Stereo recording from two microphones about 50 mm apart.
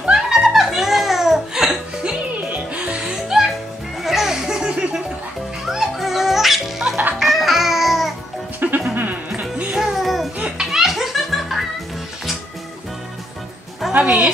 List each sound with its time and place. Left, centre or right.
0.1 s giggle: centre
2.5 s music: right
3.3 s music: centre
5.7 s music: centre
7.2 s babbling: centre
8.5 s music: right
9.8 s music: centre
13.9 s music: right